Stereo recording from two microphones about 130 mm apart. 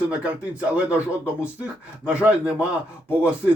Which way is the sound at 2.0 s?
10° right (ahead or behind).